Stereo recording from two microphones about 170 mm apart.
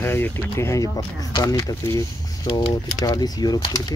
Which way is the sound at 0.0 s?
15° left (ahead or behind).